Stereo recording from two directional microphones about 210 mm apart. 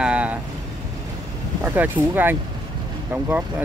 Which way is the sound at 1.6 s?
10° right (ahead or behind).